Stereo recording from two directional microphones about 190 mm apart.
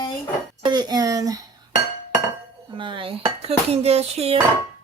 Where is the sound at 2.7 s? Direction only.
25° right (ahead or behind).